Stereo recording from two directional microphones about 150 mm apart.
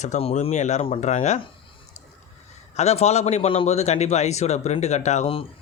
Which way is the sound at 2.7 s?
45° left (ahead or behind).